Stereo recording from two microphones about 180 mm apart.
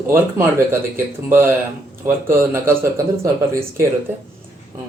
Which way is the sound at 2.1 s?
10° right (ahead or behind).